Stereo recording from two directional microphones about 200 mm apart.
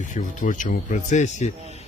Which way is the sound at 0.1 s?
40° left (ahead or behind).